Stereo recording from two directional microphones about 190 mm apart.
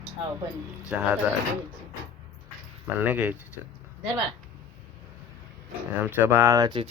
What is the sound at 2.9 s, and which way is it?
Speech, 10° right (ahead or behind).